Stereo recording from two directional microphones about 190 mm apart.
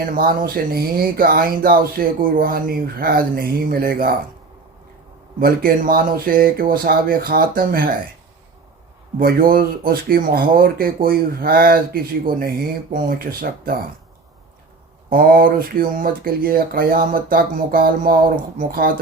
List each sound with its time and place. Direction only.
0.0 s speech: 50° right (ahead or behind)
5.4 s speech: 50° right (ahead or behind)
9.1 s speech: 50° right (ahead or behind)
15.1 s speech: 50° right (ahead or behind)